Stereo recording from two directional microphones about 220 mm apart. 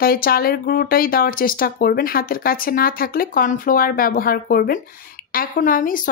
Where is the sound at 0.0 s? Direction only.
40° left (ahead or behind).